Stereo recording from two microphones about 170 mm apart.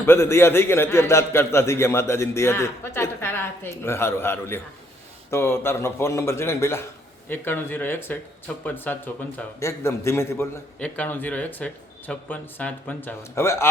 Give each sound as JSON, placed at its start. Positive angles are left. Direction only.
{"t": 0.0, "sound": "a man's voice", "side_deg": 15}